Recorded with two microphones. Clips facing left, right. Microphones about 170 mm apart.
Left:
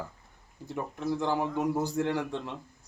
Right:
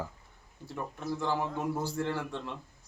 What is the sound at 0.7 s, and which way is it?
Speech, 15° left (ahead or behind).